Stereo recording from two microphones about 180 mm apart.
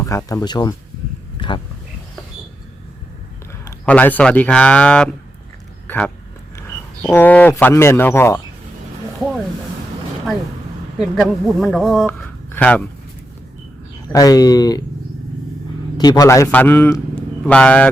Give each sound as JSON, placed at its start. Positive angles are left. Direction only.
{"t": 0.0, "sound": "speech", "side_deg": 15}
{"t": 1.4, "sound": "a sound", "side_deg": 25}
{"t": 3.7, "sound": "speech", "side_deg": 10}
{"t": 6.6, "sound": "speech", "side_deg": 10}
{"t": 10.9, "sound": "speech", "side_deg": 0}
{"t": 14.1, "sound": "speech", "side_deg": 20}
{"t": 16.0, "sound": "speech", "side_deg": 20}